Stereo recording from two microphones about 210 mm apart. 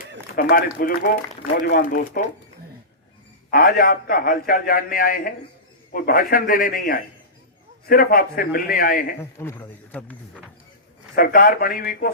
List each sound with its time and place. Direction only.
0.3 s a man's voice: 45° left (ahead or behind)
3.5 s a man's voice: 45° left (ahead or behind)
9.4 s speech: 10° left (ahead or behind)
11.1 s a man's voice: 45° left (ahead or behind)